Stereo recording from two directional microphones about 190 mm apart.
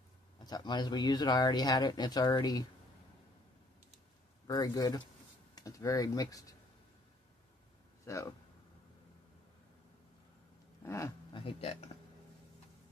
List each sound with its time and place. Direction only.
0.4 s speech: 20° left (ahead or behind)
4.5 s speech: 20° left (ahead or behind)
8.0 s speech: 15° left (ahead or behind)
10.8 s a sound: 15° left (ahead or behind)
11.3 s speech: 30° left (ahead or behind)